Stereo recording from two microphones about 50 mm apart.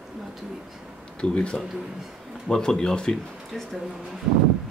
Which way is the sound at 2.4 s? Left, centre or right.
Centre.